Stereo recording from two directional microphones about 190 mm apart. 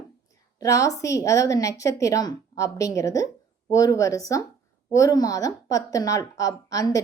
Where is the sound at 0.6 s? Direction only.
15° left (ahead or behind).